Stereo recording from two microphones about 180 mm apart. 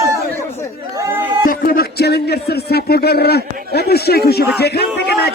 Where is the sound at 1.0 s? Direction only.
10° right (ahead or behind).